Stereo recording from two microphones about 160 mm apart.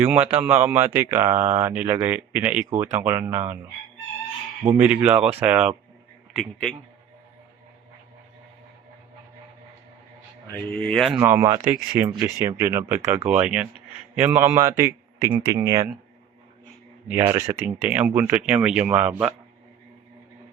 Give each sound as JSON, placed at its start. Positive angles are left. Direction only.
{"t": 0.0, "sound": "speech", "side_deg": -10}
{"t": 2.6, "sound": "speech", "side_deg": -20}
{"t": 4.8, "sound": "speech", "side_deg": -10}
{"t": 6.3, "sound": "speech", "side_deg": 5}
{"t": 10.5, "sound": "speech", "side_deg": 10}
{"t": 11.2, "sound": "speech", "side_deg": -15}
{"t": 17.1, "sound": "speech", "side_deg": -15}